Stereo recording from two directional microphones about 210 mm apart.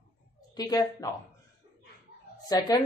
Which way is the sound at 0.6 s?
20° left (ahead or behind).